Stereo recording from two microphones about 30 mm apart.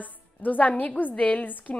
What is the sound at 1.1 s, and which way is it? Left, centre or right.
Speech, left.